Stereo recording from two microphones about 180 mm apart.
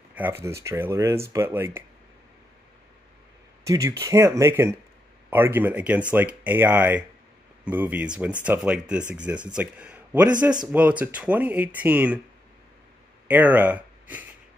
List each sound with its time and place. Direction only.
0.1 s rub: 10° right (ahead or behind)
0.6 s speech: 15° right (ahead or behind)
3.6 s speech: 20° right (ahead or behind)
13.3 s speech: 10° right (ahead or behind)